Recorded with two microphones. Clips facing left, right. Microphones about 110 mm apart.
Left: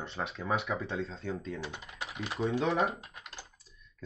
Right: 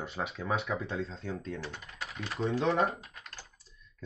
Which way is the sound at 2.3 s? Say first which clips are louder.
Right 1 dB; centre (ahead or behind).